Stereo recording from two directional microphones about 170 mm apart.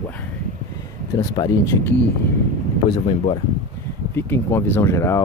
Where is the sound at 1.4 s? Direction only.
25° left (ahead or behind).